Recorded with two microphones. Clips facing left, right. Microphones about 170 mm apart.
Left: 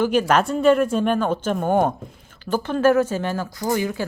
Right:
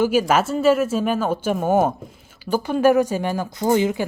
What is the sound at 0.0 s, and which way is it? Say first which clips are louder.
A woman's voice: right 1 dB; 5° right (ahead or behind).